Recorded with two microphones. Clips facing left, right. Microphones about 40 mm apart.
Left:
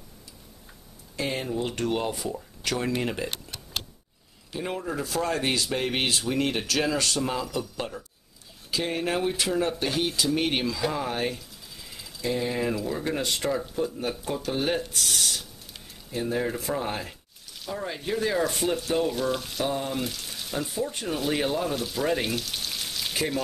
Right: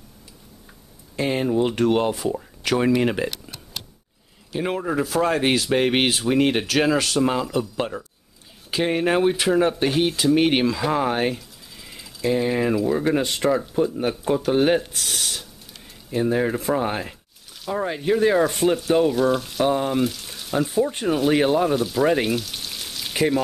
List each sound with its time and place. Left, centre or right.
1.1 s speech: right
4.6 s speech: right
11.3 s speech: centre
21.3 s frying: centre
23.1 s speech: centre